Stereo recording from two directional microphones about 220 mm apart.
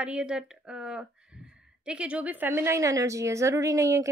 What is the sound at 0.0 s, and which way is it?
A woman's voice, 5° right (ahead or behind).